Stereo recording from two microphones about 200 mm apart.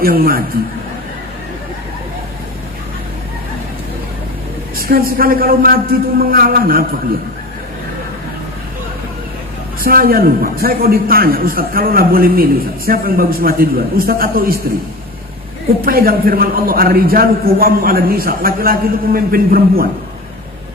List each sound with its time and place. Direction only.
0.0 s a man's voice: 45° right (ahead or behind)
4.8 s a man's voice: 50° right (ahead or behind)
9.8 s a man's voice: 45° right (ahead or behind)
15.8 s a man's voice: 45° right (ahead or behind)